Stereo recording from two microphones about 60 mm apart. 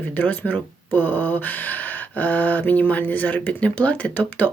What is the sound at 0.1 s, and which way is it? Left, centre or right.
Speech, left.